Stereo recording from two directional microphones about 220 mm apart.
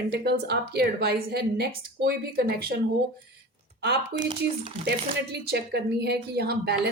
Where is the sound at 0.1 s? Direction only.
50° right (ahead or behind).